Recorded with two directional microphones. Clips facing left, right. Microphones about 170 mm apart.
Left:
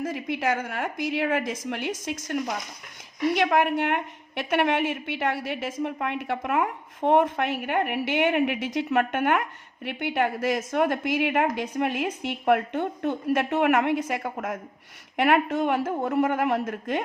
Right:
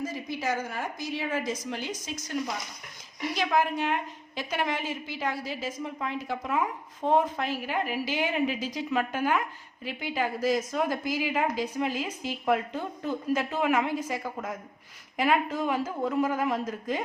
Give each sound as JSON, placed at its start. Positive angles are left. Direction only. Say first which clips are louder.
{"t": 0.0, "sound": "a sound", "louder": "left 4 dB", "side_deg": 60}
{"t": 0.7, "sound": "a woman's voice", "louder": "left 5 dB", "side_deg": 65}
{"t": 15.1, "sound": "speech", "louder": "left 4 dB", "side_deg": 65}